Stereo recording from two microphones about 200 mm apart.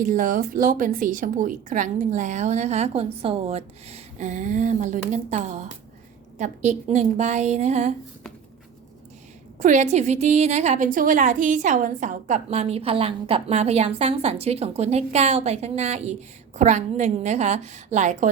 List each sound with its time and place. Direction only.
0.0 s a woman's voice: 40° right (ahead or behind)
9.6 s a woman's voice: 35° right (ahead or behind)